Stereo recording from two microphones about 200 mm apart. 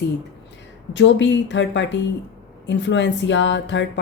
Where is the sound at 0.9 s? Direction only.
65° left (ahead or behind).